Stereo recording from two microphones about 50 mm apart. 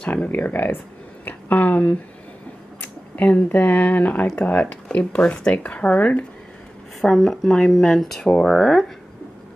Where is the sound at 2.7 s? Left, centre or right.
Left.